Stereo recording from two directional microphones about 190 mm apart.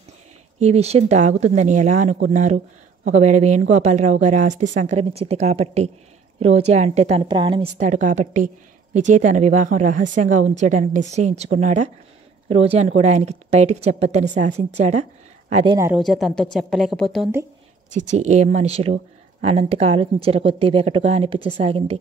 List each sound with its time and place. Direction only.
0.6 s a woman's voice: 35° right (ahead or behind)
7.8 s a woman's voice: 40° right (ahead or behind)
16.0 s a woman's voice: centre (ahead or behind)
17.9 s a woman's voice: 40° right (ahead or behind)